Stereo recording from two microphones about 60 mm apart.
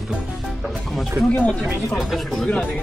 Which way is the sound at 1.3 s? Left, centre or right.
Left.